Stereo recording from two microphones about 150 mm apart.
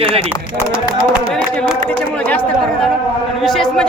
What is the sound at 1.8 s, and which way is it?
A man's voice, 10° left (ahead or behind).